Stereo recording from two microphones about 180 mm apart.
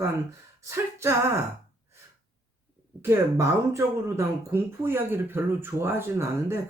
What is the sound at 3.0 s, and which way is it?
Speech, 15° right (ahead or behind).